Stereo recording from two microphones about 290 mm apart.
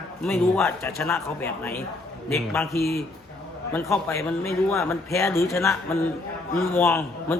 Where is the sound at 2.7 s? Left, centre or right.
Left.